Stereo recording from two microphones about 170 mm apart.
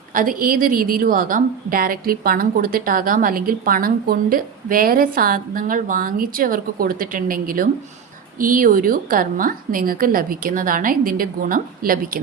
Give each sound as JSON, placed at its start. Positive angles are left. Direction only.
{"t": 0.1, "sound": "a woman's voice", "side_deg": -55}